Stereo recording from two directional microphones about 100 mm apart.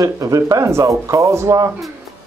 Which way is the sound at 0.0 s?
35° right (ahead or behind).